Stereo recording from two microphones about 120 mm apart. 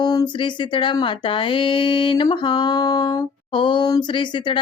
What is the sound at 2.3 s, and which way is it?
Speech, 40° left (ahead or behind).